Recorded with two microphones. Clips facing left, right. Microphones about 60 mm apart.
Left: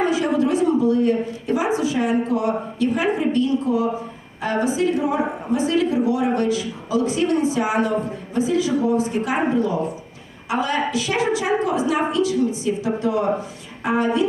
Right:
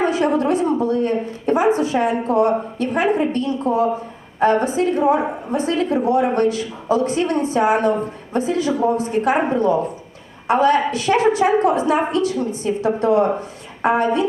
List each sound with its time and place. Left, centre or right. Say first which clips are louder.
0.0 s speech: right 2 dB; right